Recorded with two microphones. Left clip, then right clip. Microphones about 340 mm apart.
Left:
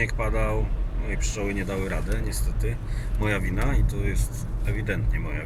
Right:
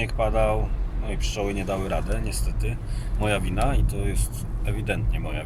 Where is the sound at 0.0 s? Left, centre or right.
Centre.